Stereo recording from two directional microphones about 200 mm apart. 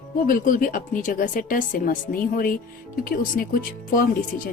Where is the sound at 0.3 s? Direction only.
40° left (ahead or behind).